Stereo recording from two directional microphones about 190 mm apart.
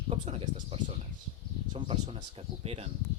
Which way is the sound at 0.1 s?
35° right (ahead or behind).